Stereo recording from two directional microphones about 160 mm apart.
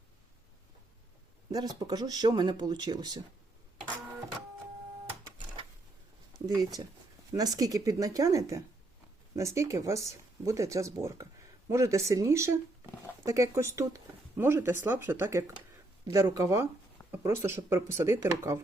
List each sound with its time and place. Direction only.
1.5 s speech: 25° right (ahead or behind)
7.3 s speech: 25° right (ahead or behind)